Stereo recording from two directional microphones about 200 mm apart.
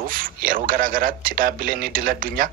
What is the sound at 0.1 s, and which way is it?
Speech, 45° right (ahead or behind).